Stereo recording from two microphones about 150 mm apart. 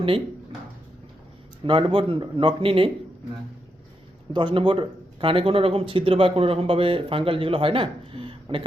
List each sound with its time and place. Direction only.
1.6 s speech: 30° right (ahead or behind)
4.3 s speech: 30° right (ahead or behind)